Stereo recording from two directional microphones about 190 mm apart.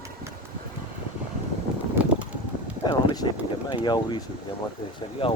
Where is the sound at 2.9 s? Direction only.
20° left (ahead or behind).